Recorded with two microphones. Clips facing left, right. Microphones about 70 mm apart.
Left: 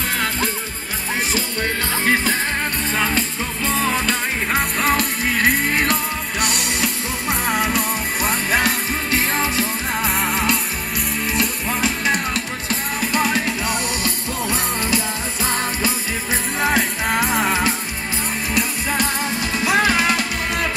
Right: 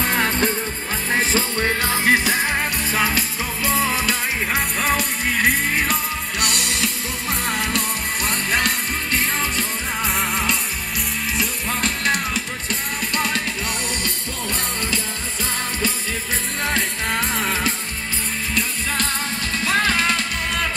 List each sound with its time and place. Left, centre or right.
1.3 s music: right; by 15.0 s centre
16.6 s music: centre